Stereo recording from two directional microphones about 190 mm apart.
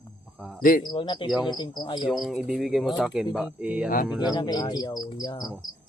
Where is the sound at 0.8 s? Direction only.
25° left (ahead or behind).